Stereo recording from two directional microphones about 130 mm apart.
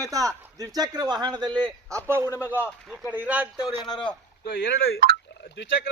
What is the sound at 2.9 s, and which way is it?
Speech, 5° right (ahead or behind).